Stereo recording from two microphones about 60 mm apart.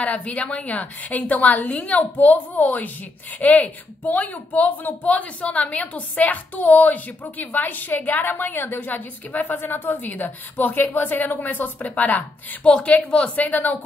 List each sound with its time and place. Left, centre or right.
0.0 s a woman's voice: left